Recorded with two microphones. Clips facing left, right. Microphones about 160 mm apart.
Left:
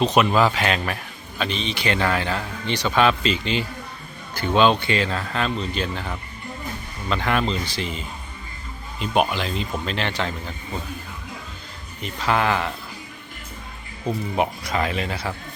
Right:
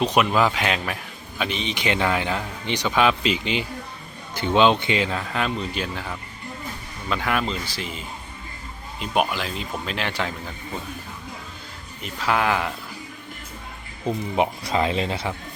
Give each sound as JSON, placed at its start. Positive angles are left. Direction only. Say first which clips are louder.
{"t": 0.0, "sound": "a man's voice", "louder": "left 2 dB", "side_deg": -10}
{"t": 12.0, "sound": "a man's voice", "louder": "left 1 dB", "side_deg": -5}
{"t": 14.1, "sound": "speech", "louder": "right 1 dB", "side_deg": -20}